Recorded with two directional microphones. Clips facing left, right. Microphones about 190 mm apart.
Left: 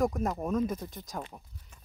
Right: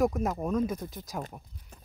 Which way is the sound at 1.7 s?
35° right (ahead or behind).